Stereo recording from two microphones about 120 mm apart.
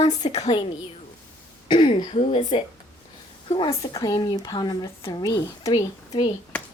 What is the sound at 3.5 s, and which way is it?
Speech, 40° left (ahead or behind).